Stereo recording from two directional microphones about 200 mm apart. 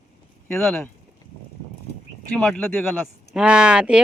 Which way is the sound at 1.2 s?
20° left (ahead or behind).